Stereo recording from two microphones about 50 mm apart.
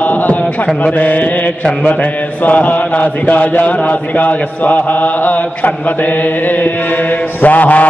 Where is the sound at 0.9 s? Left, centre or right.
Left.